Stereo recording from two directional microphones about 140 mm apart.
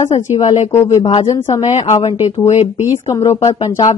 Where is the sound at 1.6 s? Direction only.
50° left (ahead or behind).